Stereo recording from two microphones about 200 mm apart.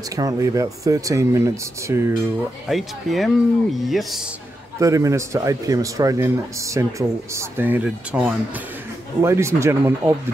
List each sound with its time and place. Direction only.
0.1 s a man's voice: 15° right (ahead or behind)
2.7 s speech: centre (ahead or behind)
4.7 s a man's voice: 15° right (ahead or behind)